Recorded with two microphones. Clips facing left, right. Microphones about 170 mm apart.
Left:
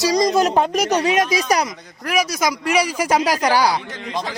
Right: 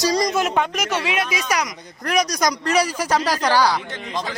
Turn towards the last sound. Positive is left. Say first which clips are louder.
# left 1 dB
turn(degrees=10)  # may be behind; listen again after turning